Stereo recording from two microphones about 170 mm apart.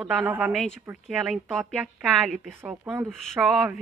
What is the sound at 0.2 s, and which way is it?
Speech, 10° right (ahead or behind).